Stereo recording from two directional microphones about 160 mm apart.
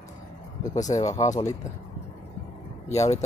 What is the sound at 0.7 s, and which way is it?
Speech, 50° left (ahead or behind).